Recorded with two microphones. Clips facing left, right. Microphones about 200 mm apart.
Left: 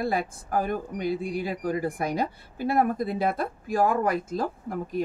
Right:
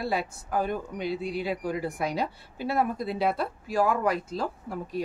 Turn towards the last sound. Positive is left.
turn(degrees=50)  # may be behind; listen again after turning